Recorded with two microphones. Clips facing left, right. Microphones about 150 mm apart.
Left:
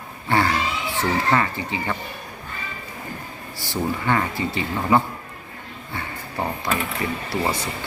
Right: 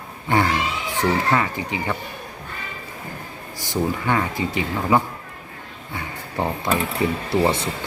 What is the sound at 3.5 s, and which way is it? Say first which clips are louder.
Speech: right 2 dB; 20° right (ahead or behind).